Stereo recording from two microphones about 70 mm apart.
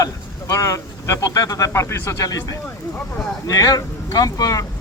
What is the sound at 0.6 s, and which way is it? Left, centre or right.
Speech, left.